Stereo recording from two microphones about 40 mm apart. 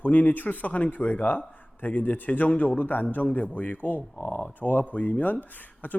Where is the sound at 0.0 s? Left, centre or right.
Left.